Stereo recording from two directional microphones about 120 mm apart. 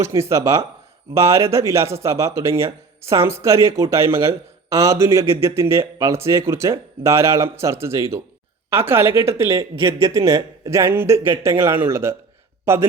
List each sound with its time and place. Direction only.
0.0 s a man's voice: 25° right (ahead or behind)